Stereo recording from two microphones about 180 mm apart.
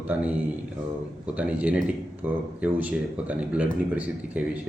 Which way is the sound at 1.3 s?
5° right (ahead or behind).